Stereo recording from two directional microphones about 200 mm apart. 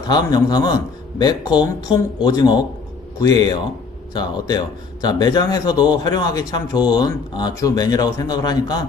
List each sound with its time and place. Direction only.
0.1 s a man's voice: 20° left (ahead or behind)